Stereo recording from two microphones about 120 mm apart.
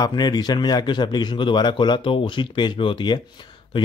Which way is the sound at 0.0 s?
35° left (ahead or behind).